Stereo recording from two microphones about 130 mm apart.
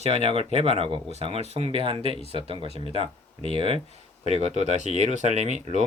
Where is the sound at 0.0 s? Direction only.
50° right (ahead or behind).